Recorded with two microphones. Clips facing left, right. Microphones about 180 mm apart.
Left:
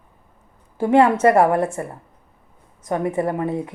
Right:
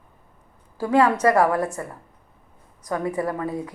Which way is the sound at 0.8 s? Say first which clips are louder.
Left 4 dB; 25° left (ahead or behind).